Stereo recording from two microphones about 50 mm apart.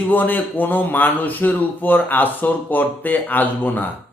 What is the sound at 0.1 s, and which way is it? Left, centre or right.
Speech, left.